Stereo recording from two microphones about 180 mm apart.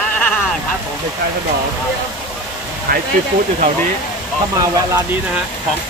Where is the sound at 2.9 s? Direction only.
55° right (ahead or behind).